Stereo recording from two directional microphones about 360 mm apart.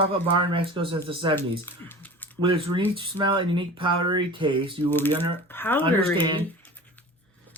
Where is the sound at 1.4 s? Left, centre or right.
Centre.